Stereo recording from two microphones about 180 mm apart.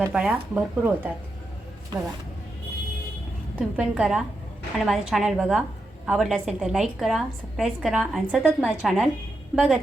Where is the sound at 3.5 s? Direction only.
5° right (ahead or behind).